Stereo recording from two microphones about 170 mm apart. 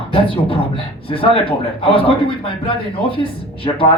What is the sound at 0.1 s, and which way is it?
Speech, 30° left (ahead or behind).